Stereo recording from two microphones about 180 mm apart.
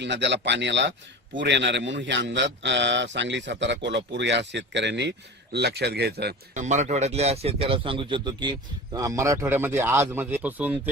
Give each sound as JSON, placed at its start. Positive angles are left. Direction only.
{"t": 0.0, "sound": "a man's voice", "side_deg": -75}
{"t": 6.5, "sound": "speech", "side_deg": -40}